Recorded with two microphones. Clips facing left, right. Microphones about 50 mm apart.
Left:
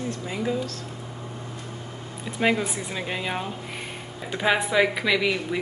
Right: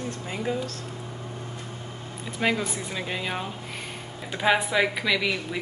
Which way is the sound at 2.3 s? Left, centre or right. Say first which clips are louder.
Left 2 dB; centre.